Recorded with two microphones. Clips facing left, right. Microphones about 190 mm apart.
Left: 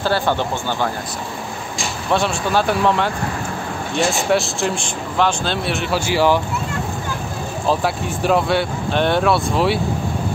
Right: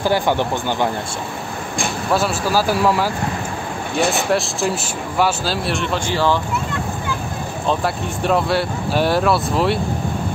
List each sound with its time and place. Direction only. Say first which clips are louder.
0.0 s speech: right 1 dB; 15° right (ahead or behind)
2.1 s speech: even; 5° right (ahead or behind)
4.1 s speech: left 1 dB; centre (ahead or behind)
7.6 s speech: left 1 dB; centre (ahead or behind)